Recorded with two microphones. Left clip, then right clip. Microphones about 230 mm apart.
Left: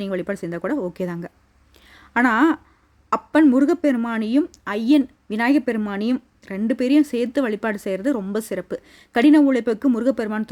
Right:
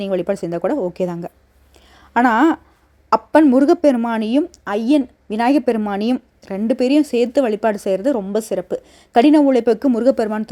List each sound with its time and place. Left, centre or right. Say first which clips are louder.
0.0 s a woman's voice: right 6 dB; centre
1.7 s a sound: right 4 dB; centre
3.1 s a woman's voice: right 4 dB; centre